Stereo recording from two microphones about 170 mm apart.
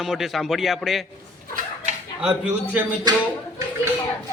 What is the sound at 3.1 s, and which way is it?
Speech, 25° right (ahead or behind).